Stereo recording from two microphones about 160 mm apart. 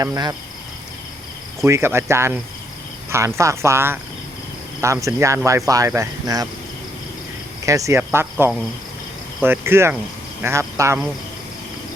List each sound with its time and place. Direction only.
0.0 s speech: 20° right (ahead or behind)
1.6 s cricket: 15° right (ahead or behind)
4.8 s speech: 20° right (ahead or behind)
7.6 s cricket: 20° right (ahead or behind)